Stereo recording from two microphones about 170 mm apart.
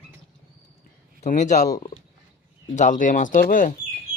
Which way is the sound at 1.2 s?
45° left (ahead or behind).